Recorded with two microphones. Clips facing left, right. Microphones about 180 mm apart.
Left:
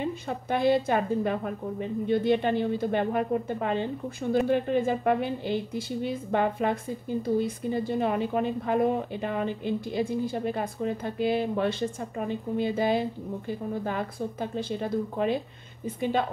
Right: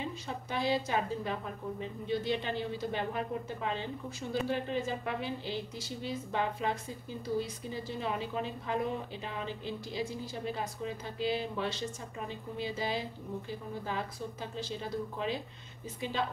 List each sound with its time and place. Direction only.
0.0 s a woman's voice: 55° left (ahead or behind)